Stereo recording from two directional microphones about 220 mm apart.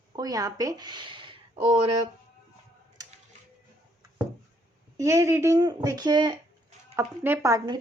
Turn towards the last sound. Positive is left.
turn(degrees=-15)  # may be behind; listen again after turning